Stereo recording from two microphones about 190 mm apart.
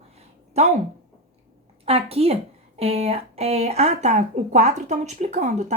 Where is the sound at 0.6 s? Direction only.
35° right (ahead or behind).